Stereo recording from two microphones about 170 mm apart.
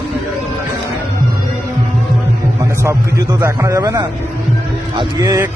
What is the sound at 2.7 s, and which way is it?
A man's voice, 15° right (ahead or behind).